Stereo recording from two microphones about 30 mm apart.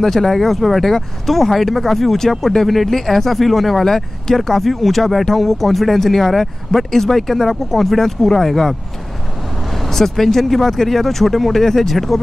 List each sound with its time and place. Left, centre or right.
0.0 s speech: centre
3.8 s speech: centre
9.7 s speech: centre